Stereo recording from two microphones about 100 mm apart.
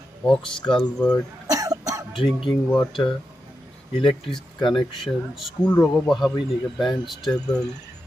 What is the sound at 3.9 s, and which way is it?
Speech, 55° left (ahead or behind).